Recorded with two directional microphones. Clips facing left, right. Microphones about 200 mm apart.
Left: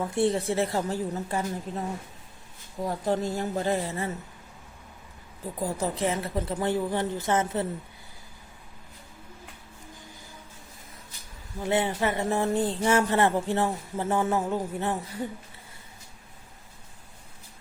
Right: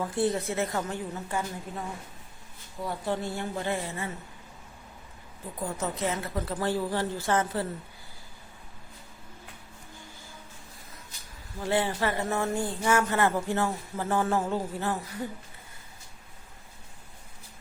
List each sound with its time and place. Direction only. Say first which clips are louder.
0.0 s a woman's voice: left 2 dB; 25° left (ahead or behind)
2.8 s a woman's voice: left 4 dB; 40° left (ahead or behind)
5.6 s a man's voice: left 3 dB; 30° left (ahead or behind)
11.6 s a man's voice: left 1 dB; 20° left (ahead or behind)